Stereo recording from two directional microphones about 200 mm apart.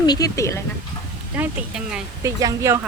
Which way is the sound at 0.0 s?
20° left (ahead or behind).